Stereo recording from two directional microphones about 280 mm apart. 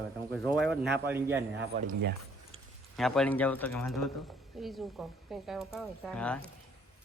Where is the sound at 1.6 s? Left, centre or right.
Right.